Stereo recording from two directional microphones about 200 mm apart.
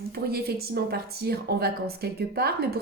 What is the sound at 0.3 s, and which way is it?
Speech, 50° right (ahead or behind).